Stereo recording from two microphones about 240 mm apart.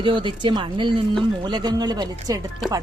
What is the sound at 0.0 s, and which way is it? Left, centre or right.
Speech, centre.